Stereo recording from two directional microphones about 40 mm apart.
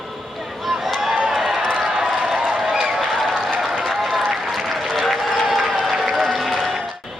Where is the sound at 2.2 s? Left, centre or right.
Centre.